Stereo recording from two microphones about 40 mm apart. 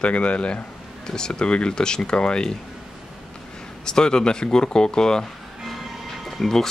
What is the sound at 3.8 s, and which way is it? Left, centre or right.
Speech, centre.